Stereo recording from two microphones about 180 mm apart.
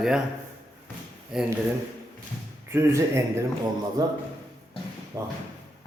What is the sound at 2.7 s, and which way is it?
Speech, 15° right (ahead or behind).